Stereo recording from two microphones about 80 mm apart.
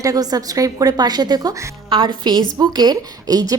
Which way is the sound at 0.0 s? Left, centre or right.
Right.